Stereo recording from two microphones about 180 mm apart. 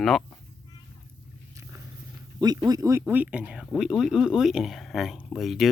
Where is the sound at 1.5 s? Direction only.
15° right (ahead or behind).